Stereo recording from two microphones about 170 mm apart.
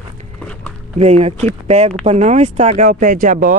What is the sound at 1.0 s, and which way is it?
Speech, 40° right (ahead or behind).